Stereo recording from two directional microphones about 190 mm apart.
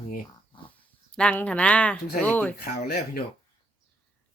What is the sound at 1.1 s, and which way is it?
Speech, 5° left (ahead or behind).